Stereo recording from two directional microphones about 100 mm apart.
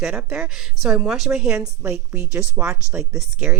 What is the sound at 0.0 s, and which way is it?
A woman's voice, 10° right (ahead or behind).